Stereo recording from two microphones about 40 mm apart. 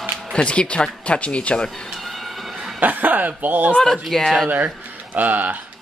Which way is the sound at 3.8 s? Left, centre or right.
Centre.